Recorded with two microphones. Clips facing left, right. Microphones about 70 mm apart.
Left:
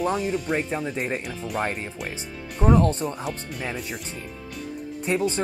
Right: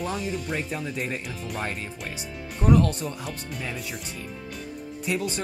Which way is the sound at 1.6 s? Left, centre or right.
Left.